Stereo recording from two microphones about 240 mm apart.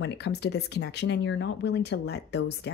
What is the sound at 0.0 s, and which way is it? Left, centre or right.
Speech, left.